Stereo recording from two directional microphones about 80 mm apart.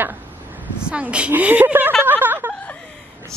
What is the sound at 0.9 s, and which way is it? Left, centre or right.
Speech, centre.